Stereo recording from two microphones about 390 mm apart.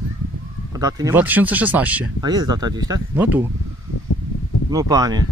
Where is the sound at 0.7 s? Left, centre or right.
Centre.